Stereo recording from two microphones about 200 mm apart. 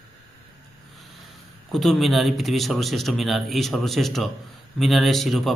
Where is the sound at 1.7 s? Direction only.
Centre (ahead or behind).